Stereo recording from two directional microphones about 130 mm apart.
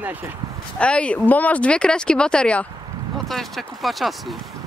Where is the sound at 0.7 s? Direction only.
10° left (ahead or behind).